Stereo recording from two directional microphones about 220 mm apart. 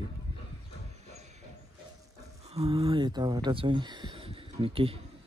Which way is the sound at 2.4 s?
25° right (ahead or behind).